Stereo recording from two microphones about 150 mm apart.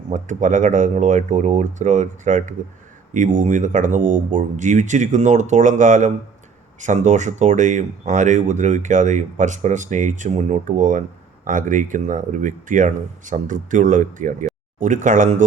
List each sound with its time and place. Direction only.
0.1 s speech: 55° right (ahead or behind)